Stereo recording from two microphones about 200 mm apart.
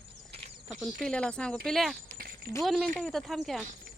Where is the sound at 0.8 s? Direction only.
5° left (ahead or behind).